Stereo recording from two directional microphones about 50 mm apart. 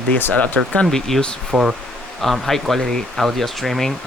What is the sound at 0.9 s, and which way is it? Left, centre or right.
Speech, centre.